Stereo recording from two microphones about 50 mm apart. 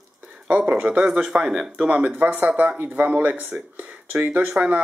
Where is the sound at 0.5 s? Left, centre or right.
Right.